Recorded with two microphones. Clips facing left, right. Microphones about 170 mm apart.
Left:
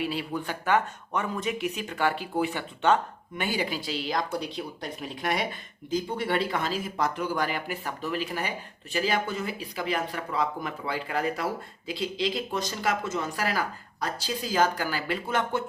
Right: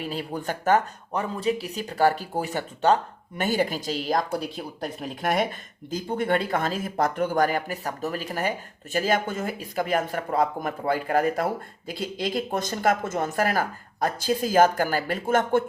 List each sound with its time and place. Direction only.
0.0 s speech: 45° right (ahead or behind)